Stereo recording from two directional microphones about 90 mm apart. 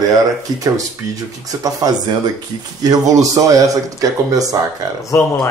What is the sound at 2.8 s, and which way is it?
Speech, 45° right (ahead or behind).